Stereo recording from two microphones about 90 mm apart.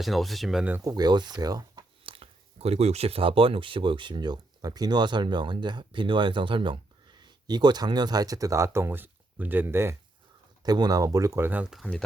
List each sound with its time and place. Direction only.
0.0 s speech: centre (ahead or behind)
0.9 s speech: 50° right (ahead or behind)
2.0 s a sound: 90° right
3.0 s speech: 90° right; by 9.9 s 25° right (ahead or behind)
10.6 s speech: 50° right (ahead or behind); by 11.6 s 25° right (ahead or behind)
11.6 s speech: 5° right (ahead or behind)